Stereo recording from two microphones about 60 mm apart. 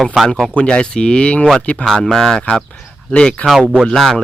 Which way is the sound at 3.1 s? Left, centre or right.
Centre.